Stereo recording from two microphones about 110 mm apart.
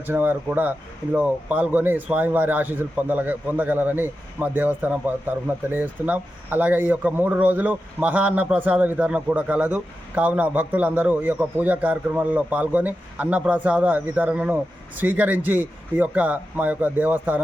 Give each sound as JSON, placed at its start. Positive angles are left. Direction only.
{"t": 0.0, "sound": "a man's voice", "side_deg": -20}